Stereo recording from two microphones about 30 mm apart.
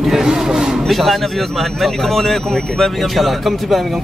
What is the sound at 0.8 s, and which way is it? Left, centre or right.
Speech, centre.